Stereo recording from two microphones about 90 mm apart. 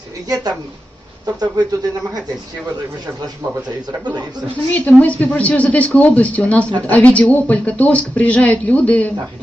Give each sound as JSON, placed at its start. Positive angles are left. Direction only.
{"t": 1.2, "sound": "speech", "side_deg": -50}
{"t": 4.0, "sound": "speech", "side_deg": -50}
{"t": 4.7, "sound": "speech", "side_deg": 15}